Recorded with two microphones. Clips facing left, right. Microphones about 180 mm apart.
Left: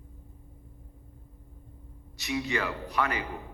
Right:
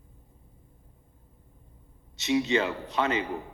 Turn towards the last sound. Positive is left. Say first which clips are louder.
# right 3 dB
turn(degrees=-25)  # may be behind; listen again after turning